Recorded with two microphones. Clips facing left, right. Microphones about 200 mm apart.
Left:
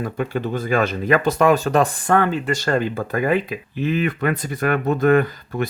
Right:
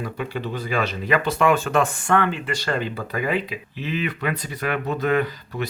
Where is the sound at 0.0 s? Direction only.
50° left (ahead or behind).